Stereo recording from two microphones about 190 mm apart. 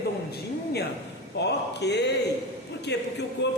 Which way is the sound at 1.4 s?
65° left (ahead or behind).